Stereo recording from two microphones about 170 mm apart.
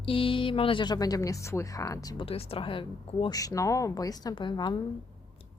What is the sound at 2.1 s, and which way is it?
Speech, 35° left (ahead or behind).